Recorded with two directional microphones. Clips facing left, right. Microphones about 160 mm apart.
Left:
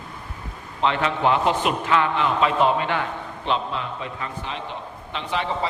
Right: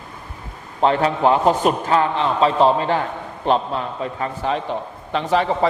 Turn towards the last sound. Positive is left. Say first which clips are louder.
# right 7 dB
turn(degrees=-45)  # may be behind; listen again after turning